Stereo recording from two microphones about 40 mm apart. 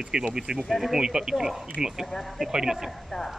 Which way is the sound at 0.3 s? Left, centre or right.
Centre.